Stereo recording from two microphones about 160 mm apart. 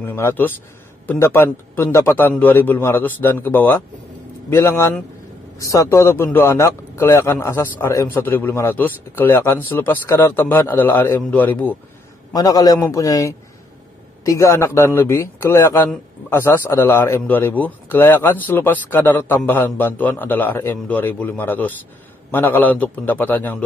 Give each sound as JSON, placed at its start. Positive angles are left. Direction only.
{"t": 0.0, "sound": "a man's voice", "side_deg": 15}
{"t": 12.3, "sound": "a man's voice", "side_deg": 25}